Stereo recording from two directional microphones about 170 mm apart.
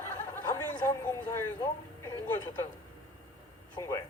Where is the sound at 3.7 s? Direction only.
15° left (ahead or behind).